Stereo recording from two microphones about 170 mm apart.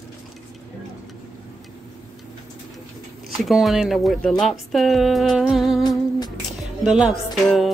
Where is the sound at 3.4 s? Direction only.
Centre (ahead or behind).